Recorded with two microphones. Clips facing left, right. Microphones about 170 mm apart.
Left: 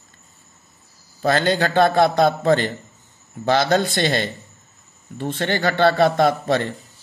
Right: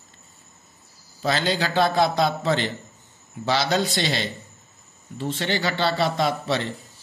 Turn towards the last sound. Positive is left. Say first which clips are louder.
# left 5 dB
turn(degrees=50)  # may be behind; listen again after turning